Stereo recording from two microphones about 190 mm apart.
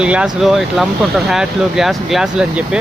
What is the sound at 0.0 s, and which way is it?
Speech, 5° right (ahead or behind).